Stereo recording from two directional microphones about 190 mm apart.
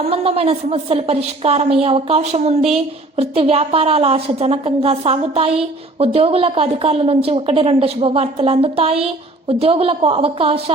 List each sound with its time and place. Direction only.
0.0 s a woman's voice: 30° right (ahead or behind)